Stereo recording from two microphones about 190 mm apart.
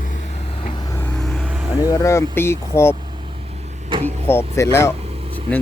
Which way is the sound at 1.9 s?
15° left (ahead or behind).